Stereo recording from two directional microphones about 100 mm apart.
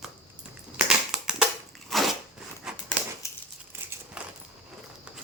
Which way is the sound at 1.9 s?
Centre (ahead or behind).